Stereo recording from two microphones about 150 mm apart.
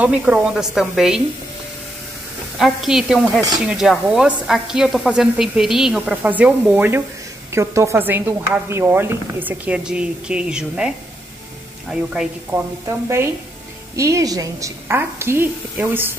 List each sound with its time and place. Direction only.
0.0 s a woman's voice: 5° right (ahead or behind)
2.6 s a woman's voice: 5° right (ahead or behind)
11.9 s a woman's voice: 5° right (ahead or behind)
13.9 s a woman's voice: 20° right (ahead or behind)